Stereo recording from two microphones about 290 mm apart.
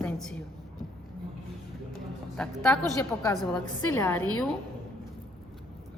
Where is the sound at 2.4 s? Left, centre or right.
Centre.